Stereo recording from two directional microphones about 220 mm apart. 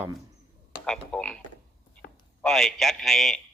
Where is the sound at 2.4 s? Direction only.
Centre (ahead or behind).